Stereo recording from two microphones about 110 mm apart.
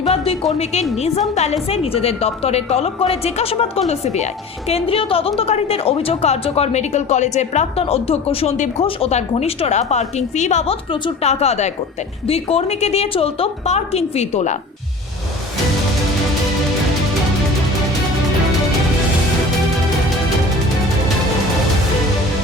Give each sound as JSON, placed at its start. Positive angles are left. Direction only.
{"t": 0.6, "sound": "a woman's voice", "side_deg": 75}
{"t": 1.6, "sound": "a woman's voice", "side_deg": 65}
{"t": 4.7, "sound": "a woman's voice", "side_deg": 60}
{"t": 11.2, "sound": "a woman's voice", "side_deg": 75}
{"t": 12.2, "sound": "a woman's voice", "side_deg": 65}